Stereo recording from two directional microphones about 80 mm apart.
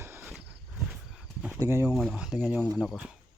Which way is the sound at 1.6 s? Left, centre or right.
Right.